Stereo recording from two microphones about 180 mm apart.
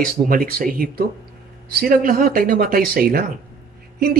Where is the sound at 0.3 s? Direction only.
55° right (ahead or behind).